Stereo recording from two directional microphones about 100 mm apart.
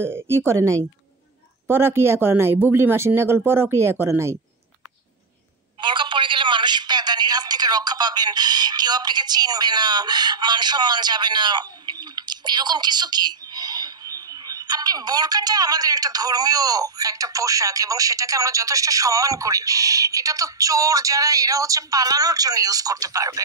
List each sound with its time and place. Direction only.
0.0 s speech: 25° right (ahead or behind)
5.8 s speech: 50° right (ahead or behind); by 23.4 s 35° right (ahead or behind)